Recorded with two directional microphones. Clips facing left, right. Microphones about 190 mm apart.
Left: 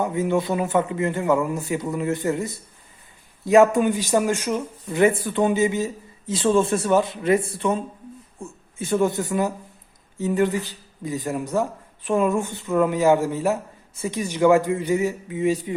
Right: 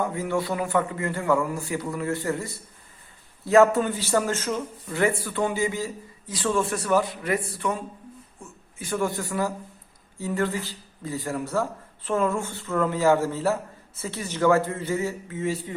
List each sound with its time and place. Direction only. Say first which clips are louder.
0.0 s a man's voice: left 4 dB; 20° left (ahead or behind)